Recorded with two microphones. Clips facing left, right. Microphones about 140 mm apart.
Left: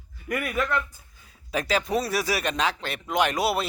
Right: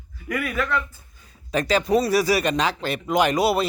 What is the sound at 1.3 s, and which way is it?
A man's voice, 5° left (ahead or behind).